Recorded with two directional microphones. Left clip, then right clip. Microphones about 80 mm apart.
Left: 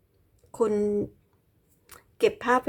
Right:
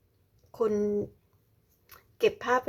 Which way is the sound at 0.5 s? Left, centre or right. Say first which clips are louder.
Left 3 dB; left.